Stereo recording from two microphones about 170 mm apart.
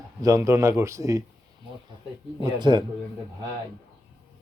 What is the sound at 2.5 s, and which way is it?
Speech, 25° right (ahead or behind).